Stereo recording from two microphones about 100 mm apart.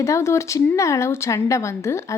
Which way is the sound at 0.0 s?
30° left (ahead or behind).